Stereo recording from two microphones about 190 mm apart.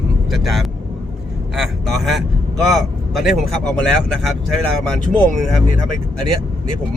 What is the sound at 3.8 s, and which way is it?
Speech, centre (ahead or behind).